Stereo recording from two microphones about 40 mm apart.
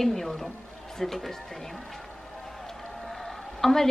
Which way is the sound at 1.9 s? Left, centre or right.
Centre.